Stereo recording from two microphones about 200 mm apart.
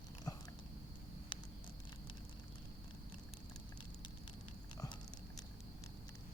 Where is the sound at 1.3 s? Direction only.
25° left (ahead or behind).